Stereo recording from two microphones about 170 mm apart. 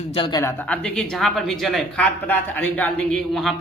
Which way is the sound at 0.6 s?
10° left (ahead or behind).